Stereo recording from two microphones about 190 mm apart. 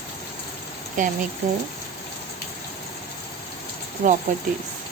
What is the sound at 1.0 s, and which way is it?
Speech, 45° right (ahead or behind).